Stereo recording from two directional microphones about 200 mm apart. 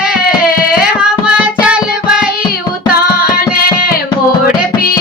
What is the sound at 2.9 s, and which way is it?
Music, 50° left (ahead or behind).